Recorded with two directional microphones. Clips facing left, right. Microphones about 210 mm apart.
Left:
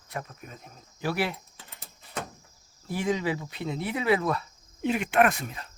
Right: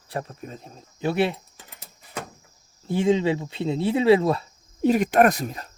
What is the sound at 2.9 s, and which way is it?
Speech, 25° right (ahead or behind).